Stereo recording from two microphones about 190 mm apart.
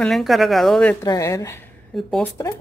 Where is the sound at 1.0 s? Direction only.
15° left (ahead or behind).